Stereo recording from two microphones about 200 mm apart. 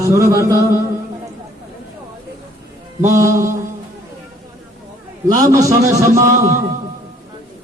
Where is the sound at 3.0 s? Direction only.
15° right (ahead or behind).